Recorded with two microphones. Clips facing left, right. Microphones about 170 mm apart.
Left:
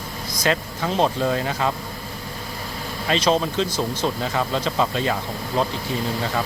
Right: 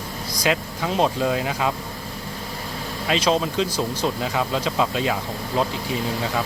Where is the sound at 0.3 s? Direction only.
10° right (ahead or behind).